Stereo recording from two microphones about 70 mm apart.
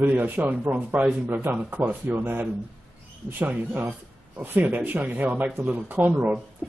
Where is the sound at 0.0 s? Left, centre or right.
Right.